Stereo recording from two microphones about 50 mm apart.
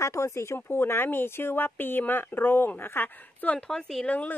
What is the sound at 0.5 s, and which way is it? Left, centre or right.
Speech, left.